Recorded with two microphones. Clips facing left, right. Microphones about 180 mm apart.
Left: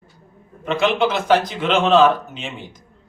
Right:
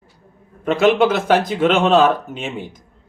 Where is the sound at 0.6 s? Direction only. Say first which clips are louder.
Right 4 dB; 50° right (ahead or behind).